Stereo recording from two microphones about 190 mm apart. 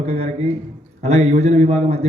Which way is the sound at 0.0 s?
35° right (ahead or behind).